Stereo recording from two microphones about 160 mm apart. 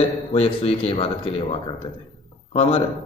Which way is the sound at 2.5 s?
40° left (ahead or behind).